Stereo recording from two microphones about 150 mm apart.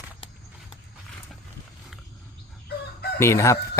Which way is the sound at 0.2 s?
40° left (ahead or behind).